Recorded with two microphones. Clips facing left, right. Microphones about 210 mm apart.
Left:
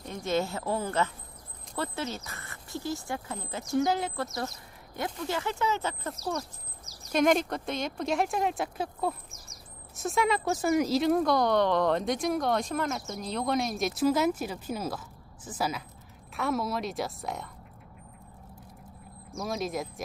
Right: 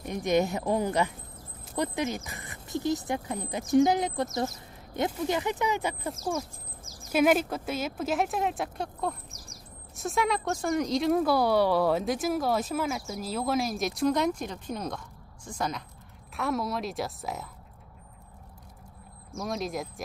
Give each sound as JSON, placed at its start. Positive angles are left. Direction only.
{"t": 0.0, "sound": "speech", "side_deg": -15}
{"t": 6.8, "sound": "a sound", "side_deg": -45}
{"t": 7.1, "sound": "speech", "side_deg": -5}
{"t": 19.3, "sound": "speech", "side_deg": 0}